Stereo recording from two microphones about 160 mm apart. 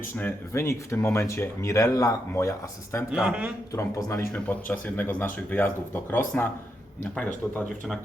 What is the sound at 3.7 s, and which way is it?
Speech, 20° left (ahead or behind).